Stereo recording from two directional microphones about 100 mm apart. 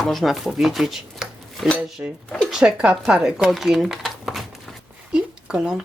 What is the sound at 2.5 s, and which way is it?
Speech, 10° right (ahead or behind).